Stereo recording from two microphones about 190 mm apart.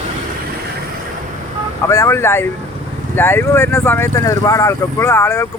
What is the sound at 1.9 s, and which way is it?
Speech, 15° left (ahead or behind).